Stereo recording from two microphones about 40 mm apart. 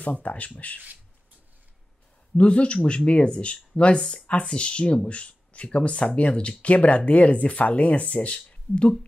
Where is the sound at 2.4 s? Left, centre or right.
Left.